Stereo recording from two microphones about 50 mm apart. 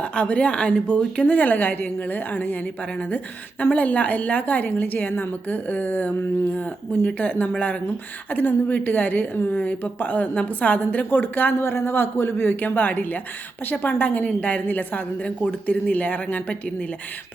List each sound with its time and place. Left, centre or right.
0.0 s speech: left
1.3 s a woman's voice: left
3.6 s a woman's voice: left